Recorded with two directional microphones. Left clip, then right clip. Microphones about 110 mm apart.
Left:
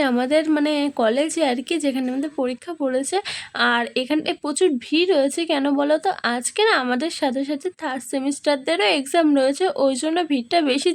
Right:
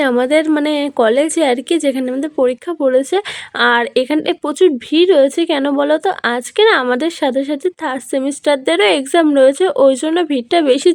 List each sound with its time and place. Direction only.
0.0 s speech: 35° right (ahead or behind)